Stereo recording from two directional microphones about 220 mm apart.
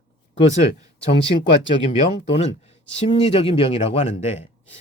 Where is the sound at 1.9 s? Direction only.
30° left (ahead or behind).